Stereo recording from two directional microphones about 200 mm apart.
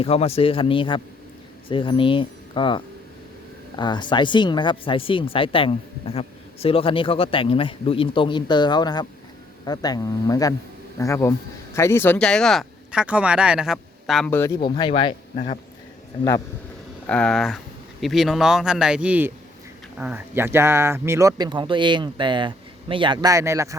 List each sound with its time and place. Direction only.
0.0 s speech: 30° left (ahead or behind); by 14.5 s 10° left (ahead or behind)
14.8 s speech: 25° left (ahead or behind)
17.1 s speech: 5° left (ahead or behind); by 23.7 s 15° right (ahead or behind)